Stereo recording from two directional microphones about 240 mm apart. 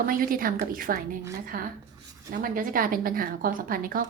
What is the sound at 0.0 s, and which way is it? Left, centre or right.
Speech, right.